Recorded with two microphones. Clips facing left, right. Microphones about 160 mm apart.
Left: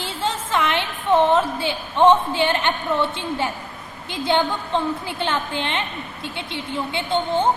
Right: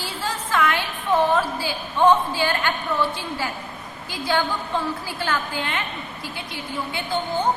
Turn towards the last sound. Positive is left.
turn(degrees=25)  # may be behind; listen again after turning